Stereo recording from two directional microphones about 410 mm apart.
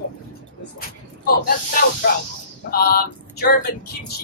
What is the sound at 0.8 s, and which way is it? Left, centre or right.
Speech, left.